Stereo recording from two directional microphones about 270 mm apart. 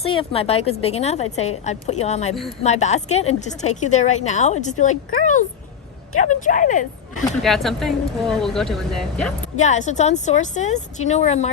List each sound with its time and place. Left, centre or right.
0.0 s a woman's voice: left
7.4 s speech: centre
9.4 s a woman's voice: left